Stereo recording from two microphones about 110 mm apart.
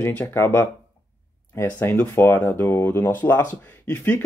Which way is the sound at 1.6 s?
15° left (ahead or behind).